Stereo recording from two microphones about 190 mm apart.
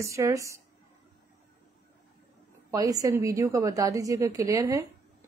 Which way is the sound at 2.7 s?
20° right (ahead or behind).